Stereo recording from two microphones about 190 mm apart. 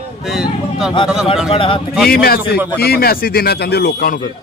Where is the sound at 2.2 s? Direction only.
55° left (ahead or behind).